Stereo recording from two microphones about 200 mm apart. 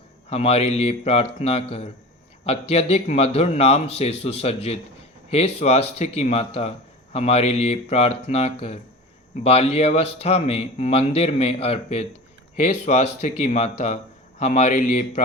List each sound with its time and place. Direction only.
0.3 s speech: 30° left (ahead or behind)